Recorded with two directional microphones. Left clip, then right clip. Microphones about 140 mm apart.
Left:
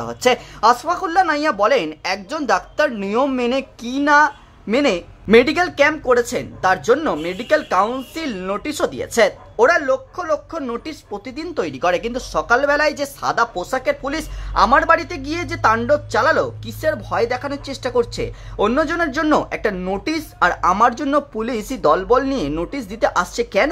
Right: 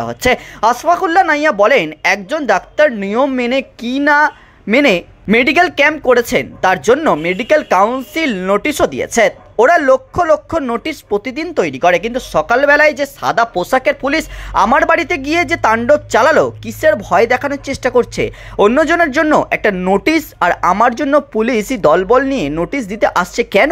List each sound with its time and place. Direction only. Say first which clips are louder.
0.0 s speech: right 3 dB; 25° right (ahead or behind)
9.7 s speech: right 10 dB; 45° right (ahead or behind)
10.7 s speech: right 10 dB; 35° right (ahead or behind)
14.5 s speech: right 3 dB; 40° right (ahead or behind); by 23.5 s 25° right (ahead or behind)